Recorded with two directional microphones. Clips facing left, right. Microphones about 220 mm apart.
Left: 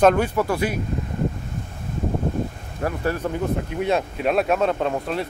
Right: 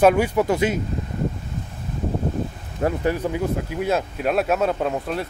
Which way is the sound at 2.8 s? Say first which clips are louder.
Right 3 dB; 20° right (ahead or behind).